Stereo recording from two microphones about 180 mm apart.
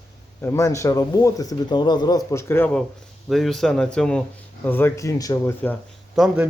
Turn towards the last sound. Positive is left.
turn(degrees=0)  # may be behind; listen again after turning